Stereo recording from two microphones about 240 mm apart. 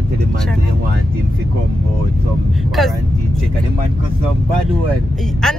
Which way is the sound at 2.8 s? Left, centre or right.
Centre.